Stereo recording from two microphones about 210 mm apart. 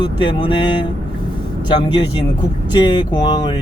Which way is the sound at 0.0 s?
20° left (ahead or behind).